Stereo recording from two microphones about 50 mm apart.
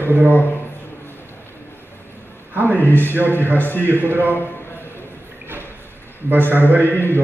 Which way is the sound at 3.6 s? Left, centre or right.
Left.